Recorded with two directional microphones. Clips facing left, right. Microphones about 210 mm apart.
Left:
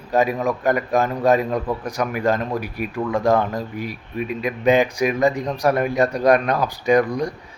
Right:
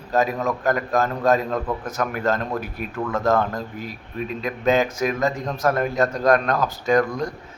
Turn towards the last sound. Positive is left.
turn(degrees=15)  # may be behind; listen again after turning